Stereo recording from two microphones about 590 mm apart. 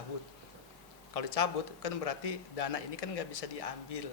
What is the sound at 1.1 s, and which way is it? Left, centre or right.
A man's voice, left.